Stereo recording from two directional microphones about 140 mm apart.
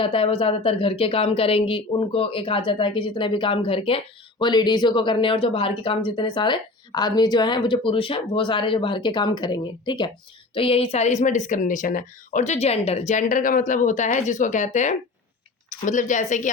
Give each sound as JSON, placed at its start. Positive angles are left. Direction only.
{"t": 0.0, "sound": "speech", "side_deg": 40}